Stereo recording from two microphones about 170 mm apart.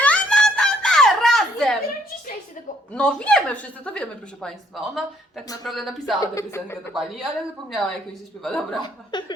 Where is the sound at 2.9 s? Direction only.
5° left (ahead or behind).